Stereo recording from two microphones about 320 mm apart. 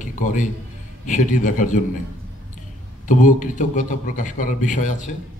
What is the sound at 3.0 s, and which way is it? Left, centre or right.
A man's voice, left.